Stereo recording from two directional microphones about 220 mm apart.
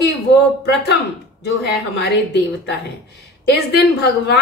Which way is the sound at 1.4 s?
50° left (ahead or behind).